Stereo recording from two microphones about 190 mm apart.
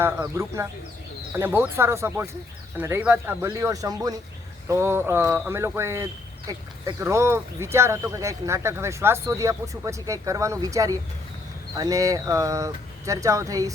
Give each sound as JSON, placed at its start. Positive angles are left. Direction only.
{"t": 0.0, "sound": "speech", "side_deg": -15}